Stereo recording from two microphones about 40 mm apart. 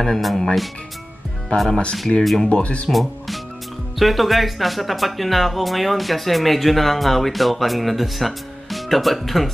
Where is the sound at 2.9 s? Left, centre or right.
Centre.